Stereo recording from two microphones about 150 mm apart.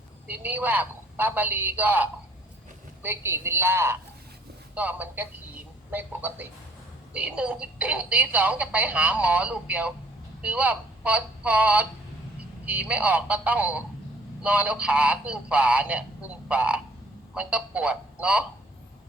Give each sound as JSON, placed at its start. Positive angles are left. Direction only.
{"t": 0.3, "sound": "a man's voice", "side_deg": -10}